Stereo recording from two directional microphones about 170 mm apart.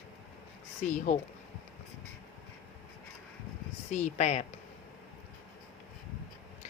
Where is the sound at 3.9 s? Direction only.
45° left (ahead or behind).